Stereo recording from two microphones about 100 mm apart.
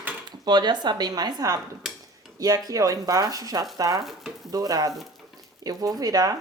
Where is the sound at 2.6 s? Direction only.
35° right (ahead or behind).